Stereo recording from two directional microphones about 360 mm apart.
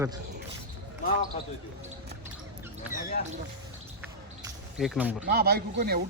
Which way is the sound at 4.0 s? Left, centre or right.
Centre.